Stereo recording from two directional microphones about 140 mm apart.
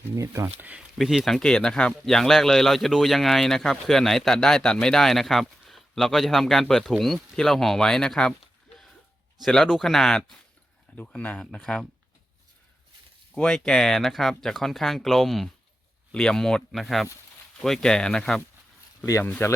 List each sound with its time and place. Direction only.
0.2 s speech: 20° right (ahead or behind)
0.6 s speech: 5° right (ahead or behind)
9.4 s speech: centre (ahead or behind)
13.3 s speech: 5° left (ahead or behind)
19.0 s speech: 20° left (ahead or behind)